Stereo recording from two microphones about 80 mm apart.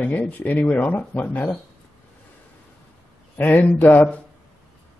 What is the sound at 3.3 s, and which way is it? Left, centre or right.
Speech, left.